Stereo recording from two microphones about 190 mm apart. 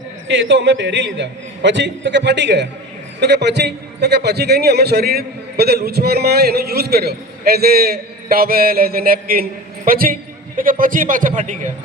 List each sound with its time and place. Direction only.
0.3 s a man's voice: 70° right (ahead or behind); by 11.7 s 45° right (ahead or behind)